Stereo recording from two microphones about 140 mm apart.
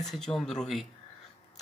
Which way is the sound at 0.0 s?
5° left (ahead or behind).